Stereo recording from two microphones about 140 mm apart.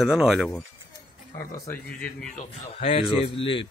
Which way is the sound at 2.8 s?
45° left (ahead or behind).